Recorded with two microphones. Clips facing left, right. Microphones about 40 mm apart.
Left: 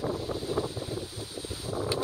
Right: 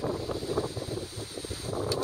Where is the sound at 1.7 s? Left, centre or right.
Left.